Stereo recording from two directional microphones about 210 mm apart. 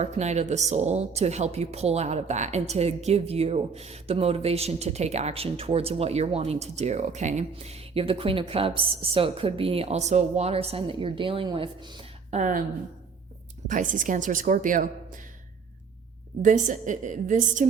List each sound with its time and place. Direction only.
0.0 s speech: 35° right (ahead or behind)
12.3 s speech: 35° right (ahead or behind)
13.7 s speech: 40° right (ahead or behind)
16.4 s speech: 35° right (ahead or behind)